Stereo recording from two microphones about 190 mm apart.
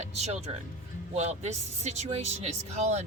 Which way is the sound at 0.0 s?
35° right (ahead or behind).